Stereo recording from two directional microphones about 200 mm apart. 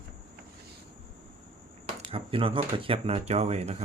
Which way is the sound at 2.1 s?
25° right (ahead or behind).